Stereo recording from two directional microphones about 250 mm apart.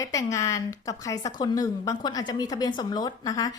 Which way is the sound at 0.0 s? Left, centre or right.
Centre.